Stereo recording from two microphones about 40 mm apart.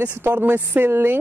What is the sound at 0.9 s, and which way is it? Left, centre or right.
Speech, right.